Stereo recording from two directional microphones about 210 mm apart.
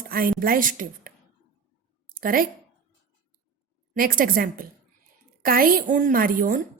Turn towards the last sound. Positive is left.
turn(degrees=-40)  # may be behind; listen again after turning